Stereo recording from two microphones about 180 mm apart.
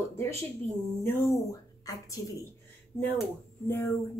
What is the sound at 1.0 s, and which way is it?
Speech, 20° left (ahead or behind).